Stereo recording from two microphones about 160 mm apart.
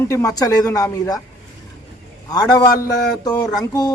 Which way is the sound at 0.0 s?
20° left (ahead or behind).